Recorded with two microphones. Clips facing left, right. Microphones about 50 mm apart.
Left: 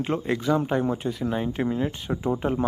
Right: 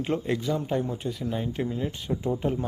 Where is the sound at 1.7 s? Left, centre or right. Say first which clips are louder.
Left 3 dB; left.